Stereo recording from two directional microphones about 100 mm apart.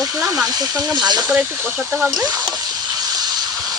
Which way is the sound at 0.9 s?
45° right (ahead or behind).